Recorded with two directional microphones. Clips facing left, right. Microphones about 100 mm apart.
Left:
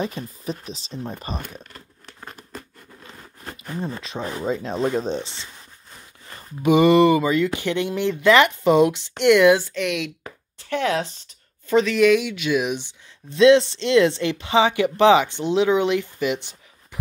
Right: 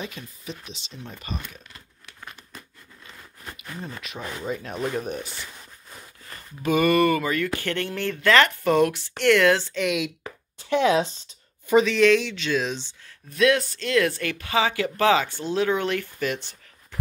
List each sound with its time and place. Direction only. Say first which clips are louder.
0.0 s speech: left 8 dB; 40° left (ahead or behind)
1.4 s crumpling: left 5 dB; 45° left (ahead or behind)
2.3 s a sound: left 6 dB; 35° left (ahead or behind)
4.6 s speech: left 6 dB; 25° left (ahead or behind)
9.8 s speech: even; centre (ahead or behind)
10.6 s speech: right 3 dB; 20° right (ahead or behind)
11.8 s speech: left 4 dB; 5° left (ahead or behind)